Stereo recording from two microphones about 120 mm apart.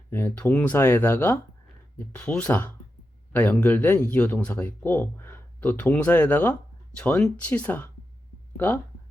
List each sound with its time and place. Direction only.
0.1 s speech: 20° left (ahead or behind)